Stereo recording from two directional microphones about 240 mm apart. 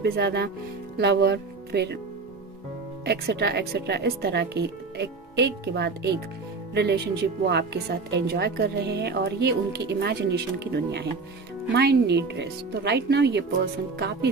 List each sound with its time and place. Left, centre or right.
0.0 s a woman's voice: right
3.1 s a woman's voice: right